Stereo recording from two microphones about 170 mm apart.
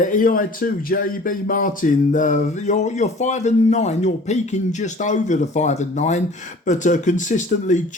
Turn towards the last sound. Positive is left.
turn(degrees=45)  # may be behind; listen again after turning